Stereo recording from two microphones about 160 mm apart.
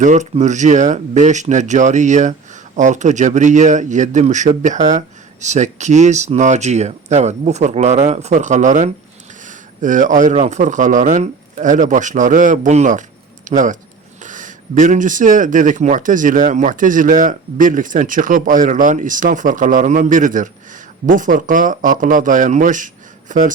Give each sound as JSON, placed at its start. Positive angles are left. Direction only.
{"t": 0.0, "sound": "a man's voice", "side_deg": -50}